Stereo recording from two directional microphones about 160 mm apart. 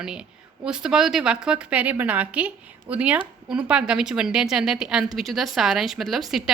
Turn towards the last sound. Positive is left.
turn(degrees=0)  # may be behind; listen again after turning